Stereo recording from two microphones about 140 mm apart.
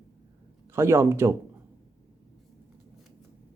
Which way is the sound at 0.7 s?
20° right (ahead or behind).